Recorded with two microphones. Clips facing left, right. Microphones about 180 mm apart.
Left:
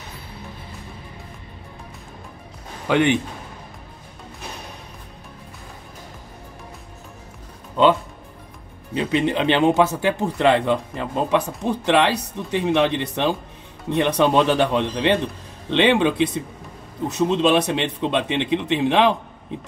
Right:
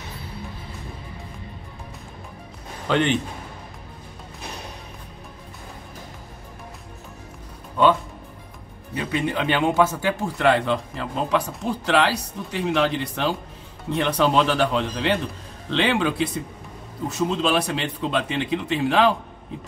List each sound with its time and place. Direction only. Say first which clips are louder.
2.9 s a man's voice: left 3 dB; 10° left (ahead or behind)
8.9 s speech: left 4 dB; 20° left (ahead or behind)